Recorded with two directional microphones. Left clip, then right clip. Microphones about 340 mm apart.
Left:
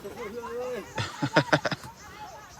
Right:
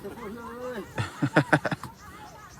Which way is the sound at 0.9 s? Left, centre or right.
Centre.